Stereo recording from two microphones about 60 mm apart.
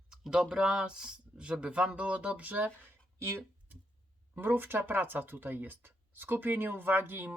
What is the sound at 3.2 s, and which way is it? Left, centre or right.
Speech, right.